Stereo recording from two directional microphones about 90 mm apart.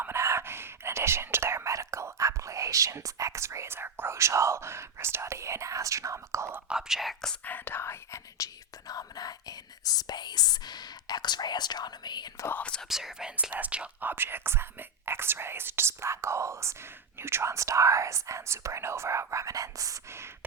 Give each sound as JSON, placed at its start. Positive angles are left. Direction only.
{"t": 0.0, "sound": "whispering", "side_deg": -30}
{"t": 6.7, "sound": "speech", "side_deg": -5}
{"t": 7.4, "sound": "speech", "side_deg": 20}
{"t": 8.9, "sound": "whispering", "side_deg": 45}
{"t": 12.5, "sound": "speech", "side_deg": 15}
{"t": 12.9, "sound": "speech", "side_deg": -5}